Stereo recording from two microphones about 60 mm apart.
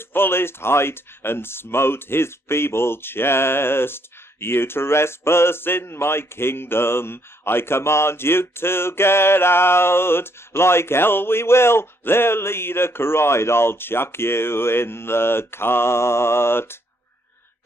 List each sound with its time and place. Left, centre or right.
0.1 s speech: left